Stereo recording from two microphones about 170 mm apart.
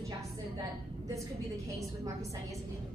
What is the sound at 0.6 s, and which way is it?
Speech, 20° right (ahead or behind).